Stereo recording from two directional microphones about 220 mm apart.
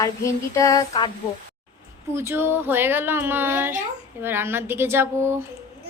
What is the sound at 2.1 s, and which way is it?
Speech, 10° right (ahead or behind).